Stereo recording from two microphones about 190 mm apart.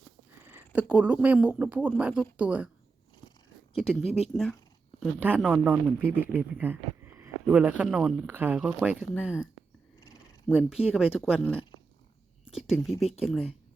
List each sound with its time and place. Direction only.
0.4 s speech: 10° right (ahead or behind)
3.8 s speech: centre (ahead or behind)
10.5 s speech: 5° right (ahead or behind)
11.3 s speech: 10° left (ahead or behind)
12.5 s speech: centre (ahead or behind)